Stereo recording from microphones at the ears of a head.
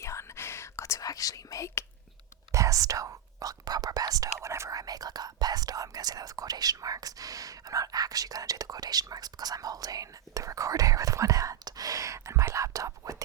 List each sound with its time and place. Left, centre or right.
0.0 s whispering: left
2.5 s speech: right